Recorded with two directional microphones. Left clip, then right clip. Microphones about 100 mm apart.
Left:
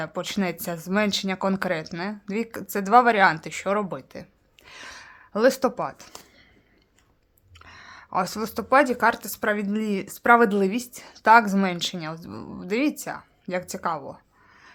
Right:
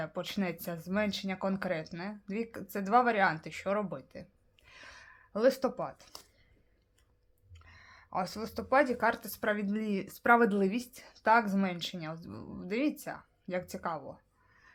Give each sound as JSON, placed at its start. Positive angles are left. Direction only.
{"t": 0.0, "sound": "speech", "side_deg": 30}
{"t": 7.6, "sound": "speech", "side_deg": 45}
{"t": 11.1, "sound": "speech", "side_deg": 35}